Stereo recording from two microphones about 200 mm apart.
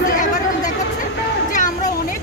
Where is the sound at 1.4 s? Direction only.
40° left (ahead or behind).